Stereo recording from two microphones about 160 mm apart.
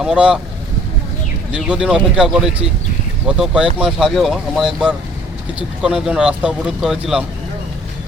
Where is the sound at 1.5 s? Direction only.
5° right (ahead or behind).